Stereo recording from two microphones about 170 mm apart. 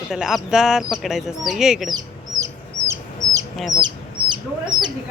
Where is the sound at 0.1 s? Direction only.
Centre (ahead or behind).